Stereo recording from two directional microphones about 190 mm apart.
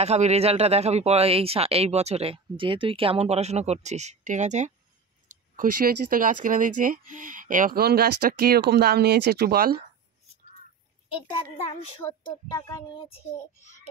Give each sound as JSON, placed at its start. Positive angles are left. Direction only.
{"t": 0.0, "sound": "speech", "side_deg": -35}
{"t": 11.1, "sound": "speech", "side_deg": 25}
{"t": 12.0, "sound": "speech", "side_deg": 15}